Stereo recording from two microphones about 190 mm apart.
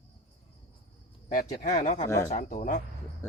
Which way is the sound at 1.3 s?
40° left (ahead or behind).